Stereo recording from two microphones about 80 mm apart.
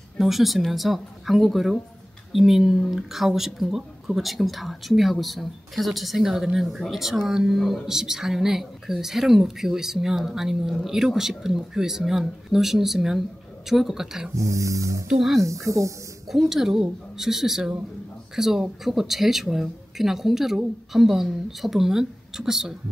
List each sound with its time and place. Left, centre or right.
0.2 s speech: centre
14.3 s music: right
15.4 s speech: right
16.3 s speech: centre